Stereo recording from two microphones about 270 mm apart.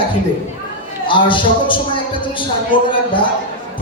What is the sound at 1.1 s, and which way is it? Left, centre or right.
A man's voice, centre.